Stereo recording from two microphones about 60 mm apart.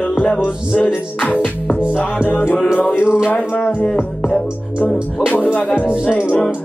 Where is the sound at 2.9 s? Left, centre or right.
Centre.